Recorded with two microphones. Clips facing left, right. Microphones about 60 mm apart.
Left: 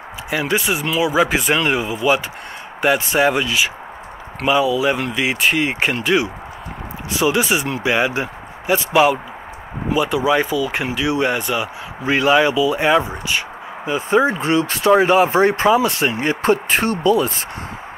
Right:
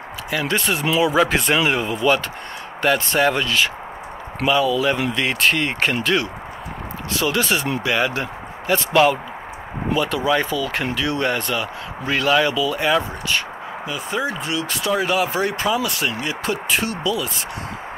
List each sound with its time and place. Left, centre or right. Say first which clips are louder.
0.3 s speech: left 2 dB; centre; by 17.3 s left